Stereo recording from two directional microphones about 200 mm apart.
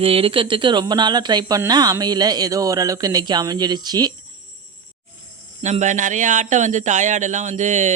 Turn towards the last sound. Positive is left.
turn(degrees=-35)  # may be behind; listen again after turning